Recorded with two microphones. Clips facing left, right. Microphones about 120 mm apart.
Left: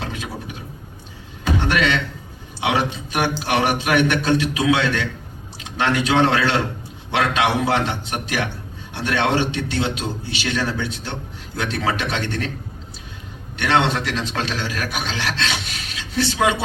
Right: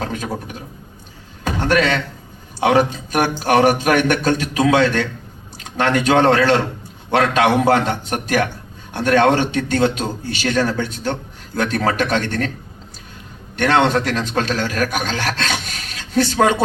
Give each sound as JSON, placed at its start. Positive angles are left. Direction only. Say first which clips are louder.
{"t": 0.0, "sound": "speech", "louder": "right 5 dB", "side_deg": -45}
{"t": 1.5, "sound": "a sound", "louder": "right 3 dB", "side_deg": -45}
{"t": 2.6, "sound": "a man's voice", "louder": "right 6 dB", "side_deg": -40}
{"t": 13.6, "sound": "a man's voice", "louder": "right 4 dB", "side_deg": -45}